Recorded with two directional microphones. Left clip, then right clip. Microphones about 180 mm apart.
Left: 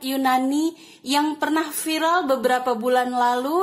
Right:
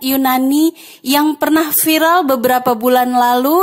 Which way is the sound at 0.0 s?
40° right (ahead or behind).